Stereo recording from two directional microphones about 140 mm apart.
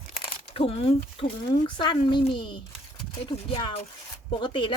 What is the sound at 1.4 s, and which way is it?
Speech, 30° left (ahead or behind).